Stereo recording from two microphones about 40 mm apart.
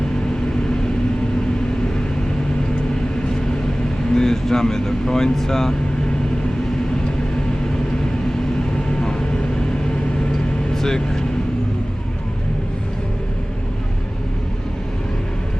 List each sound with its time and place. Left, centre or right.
4.1 s speech: centre
8.9 s vehicle: centre
10.8 s speech: centre